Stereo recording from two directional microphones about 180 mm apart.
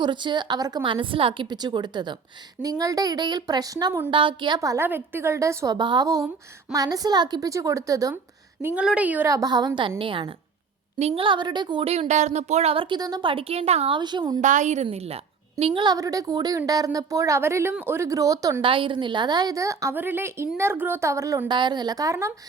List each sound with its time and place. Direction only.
0.0 s a woman's voice: 25° right (ahead or behind)
8.6 s a woman's voice: 5° right (ahead or behind); by 14.3 s 25° right (ahead or behind)
14.4 s a woman's voice: 45° right (ahead or behind); by 22.3 s 20° right (ahead or behind)